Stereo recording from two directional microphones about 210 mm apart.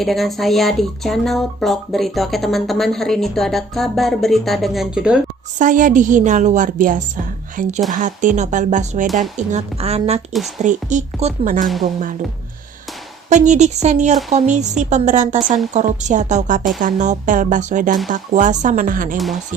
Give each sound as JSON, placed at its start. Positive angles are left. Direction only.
{"t": 0.0, "sound": "speech", "side_deg": 0}
{"t": 5.5, "sound": "a woman's voice", "side_deg": -40}
{"t": 13.3, "sound": "a woman's voice", "side_deg": -35}
{"t": 19.1, "sound": "speech", "side_deg": 0}